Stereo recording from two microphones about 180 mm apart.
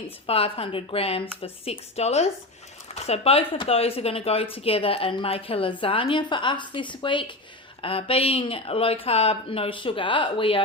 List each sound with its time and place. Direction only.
0.3 s a woman's voice: 30° left (ahead or behind)